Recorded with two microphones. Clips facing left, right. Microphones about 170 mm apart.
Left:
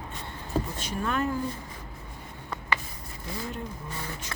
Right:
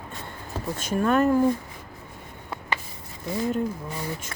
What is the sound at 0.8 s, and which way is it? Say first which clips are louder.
Speech: right 8 dB; 50° right (ahead or behind).